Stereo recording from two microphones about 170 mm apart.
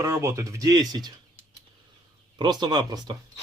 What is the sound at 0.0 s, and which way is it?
Speech, 15° right (ahead or behind).